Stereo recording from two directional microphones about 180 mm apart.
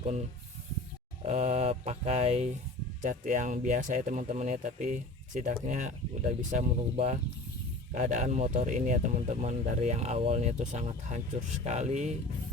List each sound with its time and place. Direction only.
1.2 s speech: 40° right (ahead or behind)